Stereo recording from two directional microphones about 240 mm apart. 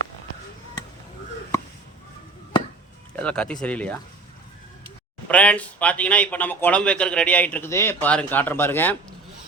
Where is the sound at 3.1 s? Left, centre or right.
Centre.